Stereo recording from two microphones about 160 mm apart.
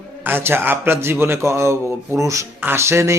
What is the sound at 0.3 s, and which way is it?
A man's voice, 15° right (ahead or behind).